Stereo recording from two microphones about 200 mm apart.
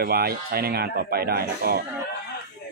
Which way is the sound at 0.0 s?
50° right (ahead or behind).